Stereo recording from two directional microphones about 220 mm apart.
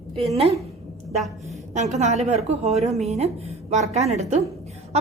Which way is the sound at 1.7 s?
30° right (ahead or behind).